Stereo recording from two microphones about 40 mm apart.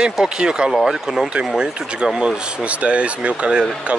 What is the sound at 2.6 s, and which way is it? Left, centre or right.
Speech, right.